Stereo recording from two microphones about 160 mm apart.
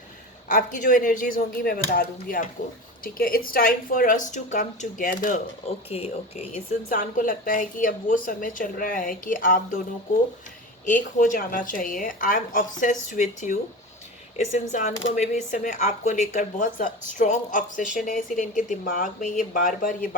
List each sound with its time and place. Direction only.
0.5 s a woman's voice: 55° left (ahead or behind)
5.9 s speech: 40° left (ahead or behind)
6.8 s a woman's voice: 55° left (ahead or behind)
10.8 s a woman's voice: 55° left (ahead or behind)